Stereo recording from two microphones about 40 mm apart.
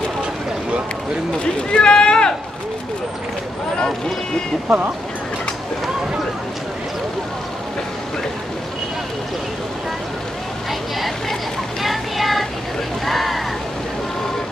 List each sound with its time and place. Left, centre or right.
1.4 s speech: left
4.6 s speech: right
11.8 s music: centre
13.0 s a sound: centre